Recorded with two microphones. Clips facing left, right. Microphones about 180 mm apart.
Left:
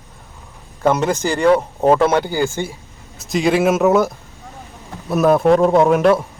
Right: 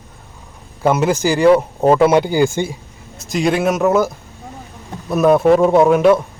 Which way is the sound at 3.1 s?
Centre (ahead or behind).